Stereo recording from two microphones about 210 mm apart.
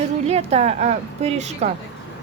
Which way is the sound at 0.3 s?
30° right (ahead or behind).